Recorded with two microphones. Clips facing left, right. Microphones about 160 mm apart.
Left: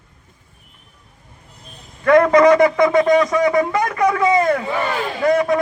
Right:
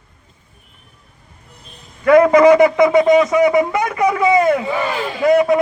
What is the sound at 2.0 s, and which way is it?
Speech, 15° right (ahead or behind).